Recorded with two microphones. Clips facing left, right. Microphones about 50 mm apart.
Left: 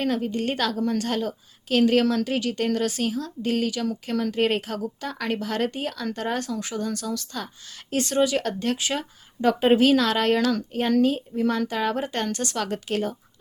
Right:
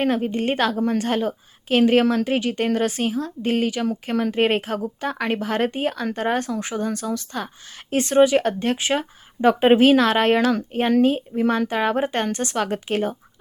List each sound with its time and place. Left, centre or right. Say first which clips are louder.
0.0 s speech: right 4 dB; right